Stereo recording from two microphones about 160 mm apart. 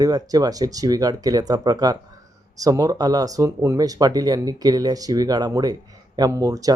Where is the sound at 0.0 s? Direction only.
25° right (ahead or behind).